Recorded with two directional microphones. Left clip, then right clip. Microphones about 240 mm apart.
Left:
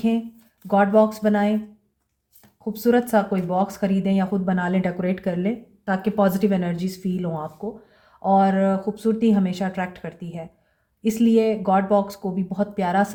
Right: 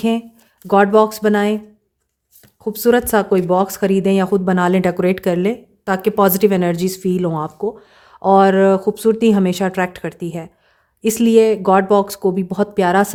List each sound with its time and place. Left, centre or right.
0.7 s speech: right
2.7 s speech: right